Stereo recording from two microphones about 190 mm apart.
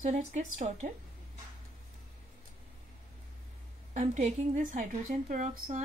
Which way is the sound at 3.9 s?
35° right (ahead or behind).